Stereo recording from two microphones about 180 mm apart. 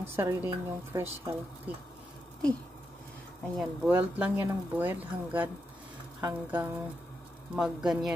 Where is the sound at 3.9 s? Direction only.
10° right (ahead or behind).